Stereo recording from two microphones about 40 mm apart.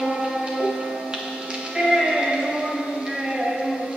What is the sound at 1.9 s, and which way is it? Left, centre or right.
Music, centre.